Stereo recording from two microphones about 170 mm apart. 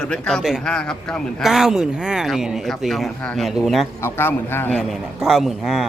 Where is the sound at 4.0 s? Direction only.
15° left (ahead or behind).